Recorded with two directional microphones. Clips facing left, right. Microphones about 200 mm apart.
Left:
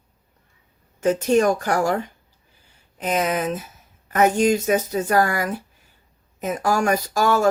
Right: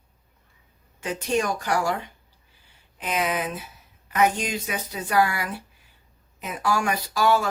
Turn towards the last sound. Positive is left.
turn(degrees=45)  # may be behind; listen again after turning